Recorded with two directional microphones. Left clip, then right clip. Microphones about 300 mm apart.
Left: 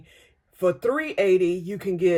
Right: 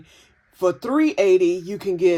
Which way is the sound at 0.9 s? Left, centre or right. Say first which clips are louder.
Right 4 dB; centre.